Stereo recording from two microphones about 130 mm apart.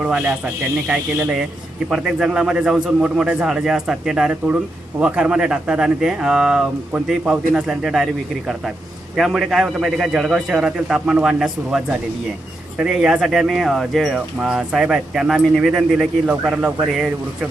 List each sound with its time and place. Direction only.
0.0 s speech: 5° right (ahead or behind)